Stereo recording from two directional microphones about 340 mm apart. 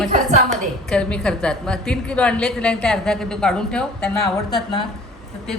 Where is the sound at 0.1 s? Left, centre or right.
Right.